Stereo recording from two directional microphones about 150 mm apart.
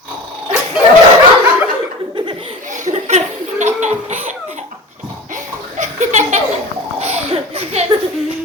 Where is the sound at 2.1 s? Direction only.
35° right (ahead or behind).